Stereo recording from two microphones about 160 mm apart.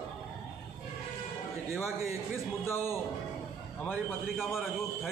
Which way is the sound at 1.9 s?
20° right (ahead or behind).